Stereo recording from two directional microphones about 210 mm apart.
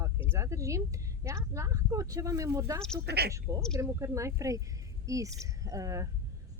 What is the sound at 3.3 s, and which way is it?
Speech, 15° right (ahead or behind).